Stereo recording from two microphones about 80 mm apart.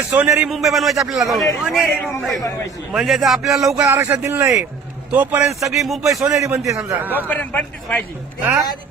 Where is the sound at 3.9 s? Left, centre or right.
Right.